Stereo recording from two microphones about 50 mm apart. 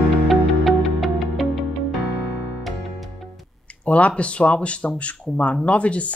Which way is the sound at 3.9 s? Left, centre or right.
Left.